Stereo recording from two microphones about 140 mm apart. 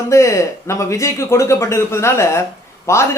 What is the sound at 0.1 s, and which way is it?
A man's voice, 20° left (ahead or behind).